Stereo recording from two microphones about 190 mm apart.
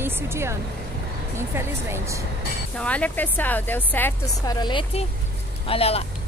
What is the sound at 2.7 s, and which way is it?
Speech, 5° left (ahead or behind).